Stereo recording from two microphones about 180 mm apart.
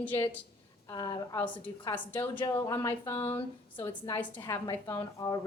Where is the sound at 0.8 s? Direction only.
20° left (ahead or behind).